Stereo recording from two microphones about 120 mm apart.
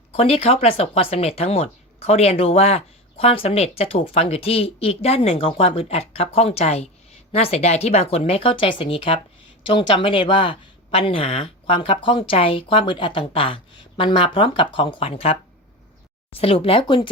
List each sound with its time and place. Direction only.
0.1 s a woman's voice: 55° left (ahead or behind)